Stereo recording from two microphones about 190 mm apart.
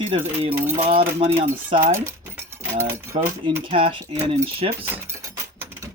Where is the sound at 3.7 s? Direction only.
25° right (ahead or behind).